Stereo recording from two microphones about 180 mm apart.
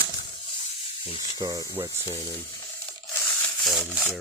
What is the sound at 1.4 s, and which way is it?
Speech, 20° right (ahead or behind).